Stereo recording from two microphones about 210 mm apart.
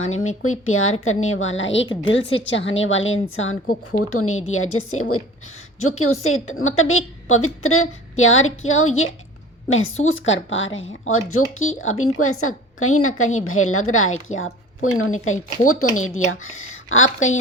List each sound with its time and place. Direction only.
0.0 s a woman's voice: 75° left (ahead or behind)
4.1 s a woman's voice: 85° left
6.0 s a woman's voice: 75° left (ahead or behind)
12.2 s a woman's voice: 90° left
16.0 s a woman's voice: 80° left